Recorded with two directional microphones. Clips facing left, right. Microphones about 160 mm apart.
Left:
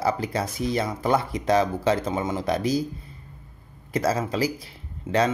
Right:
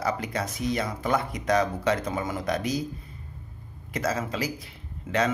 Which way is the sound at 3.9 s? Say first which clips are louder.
Left 4 dB; 35° left (ahead or behind).